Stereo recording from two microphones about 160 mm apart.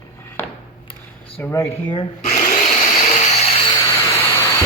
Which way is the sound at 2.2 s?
50° left (ahead or behind).